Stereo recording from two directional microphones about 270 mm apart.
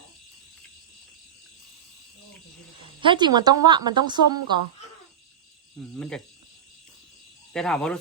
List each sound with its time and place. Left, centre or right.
3.0 s a woman's voice: centre
5.7 s speech: centre
7.5 s speech: centre